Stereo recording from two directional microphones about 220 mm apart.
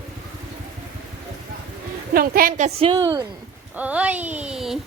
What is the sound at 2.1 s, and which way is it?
A woman's voice, 40° right (ahead or behind).